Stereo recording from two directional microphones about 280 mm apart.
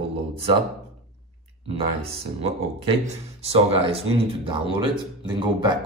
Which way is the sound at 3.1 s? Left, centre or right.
Right.